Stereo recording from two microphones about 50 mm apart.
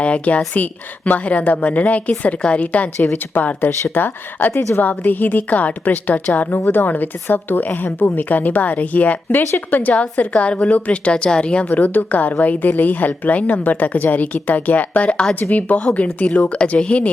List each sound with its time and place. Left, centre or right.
0.0 s a woman's voice: left
11.7 s a woman's voice: left